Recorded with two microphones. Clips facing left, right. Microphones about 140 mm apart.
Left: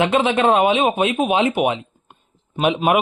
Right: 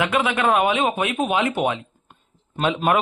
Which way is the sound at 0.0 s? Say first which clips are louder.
Left 4 dB; 25° left (ahead or behind).